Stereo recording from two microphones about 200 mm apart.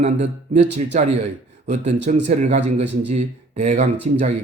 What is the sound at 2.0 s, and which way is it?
Speech, 35° right (ahead or behind).